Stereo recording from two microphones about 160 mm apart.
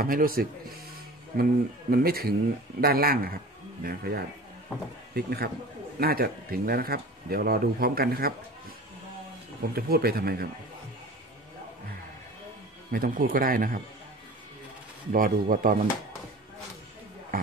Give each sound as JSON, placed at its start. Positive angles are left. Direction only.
{"t": 0.0, "sound": "speech", "side_deg": -65}
{"t": 9.8, "sound": "speech", "side_deg": -75}
{"t": 12.9, "sound": "speech", "side_deg": -65}
{"t": 15.1, "sound": "speech", "side_deg": -60}
{"t": 17.3, "sound": "a sound", "side_deg": -65}